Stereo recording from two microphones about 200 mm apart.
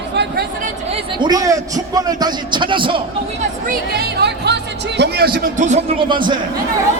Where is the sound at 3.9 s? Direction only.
55° right (ahead or behind); by 6.4 s 25° right (ahead or behind).